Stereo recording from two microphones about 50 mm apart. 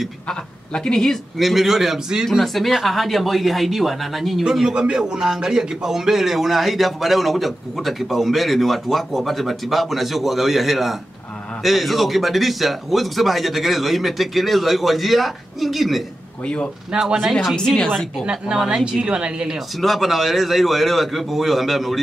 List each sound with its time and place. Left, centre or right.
0.3 s a woman's voice: centre
1.4 s speech: centre
2.3 s speech: centre
17.3 s speech: centre
17.6 s speech: centre
18.2 s speech: centre
19.8 s speech: centre